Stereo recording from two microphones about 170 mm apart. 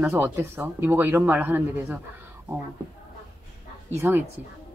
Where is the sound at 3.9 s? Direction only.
15° right (ahead or behind).